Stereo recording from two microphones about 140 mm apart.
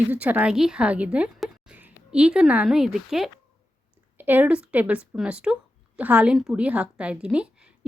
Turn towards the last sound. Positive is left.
turn(degrees=-5)  # may be behind; listen again after turning